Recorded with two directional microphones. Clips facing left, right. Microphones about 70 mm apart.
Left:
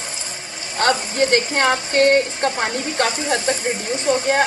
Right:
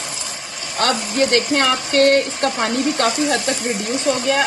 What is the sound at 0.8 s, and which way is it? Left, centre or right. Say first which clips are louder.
Speech: even; left.